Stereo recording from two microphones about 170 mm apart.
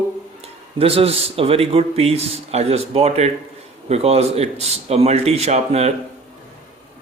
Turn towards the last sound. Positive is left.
turn(degrees=-40)  # may be behind; listen again after turning